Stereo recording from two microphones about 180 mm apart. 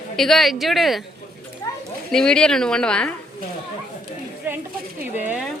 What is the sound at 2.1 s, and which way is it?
A woman's voice, 5° left (ahead or behind).